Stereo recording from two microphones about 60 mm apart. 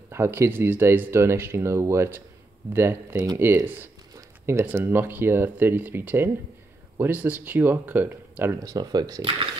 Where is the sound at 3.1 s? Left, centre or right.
Right.